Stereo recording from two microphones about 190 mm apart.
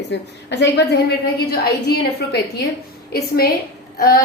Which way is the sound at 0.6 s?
60° left (ahead or behind).